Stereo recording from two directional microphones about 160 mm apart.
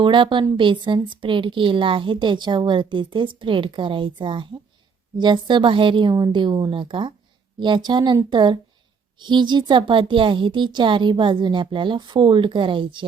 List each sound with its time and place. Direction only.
0.0 s a woman's voice: 30° right (ahead or behind)